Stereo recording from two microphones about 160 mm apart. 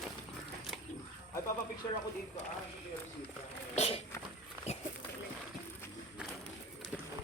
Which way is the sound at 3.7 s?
40° left (ahead or behind).